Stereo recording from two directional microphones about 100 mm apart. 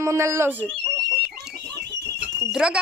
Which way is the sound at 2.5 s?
10° right (ahead or behind).